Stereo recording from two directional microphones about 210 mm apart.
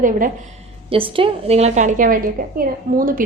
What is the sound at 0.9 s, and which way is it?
A woman's voice, 25° right (ahead or behind).